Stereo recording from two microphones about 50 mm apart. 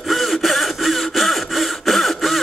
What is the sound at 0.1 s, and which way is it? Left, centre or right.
Sawing, centre.